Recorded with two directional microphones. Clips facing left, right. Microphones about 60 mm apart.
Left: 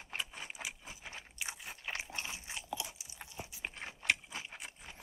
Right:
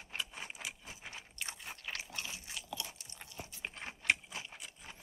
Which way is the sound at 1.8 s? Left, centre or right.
Left.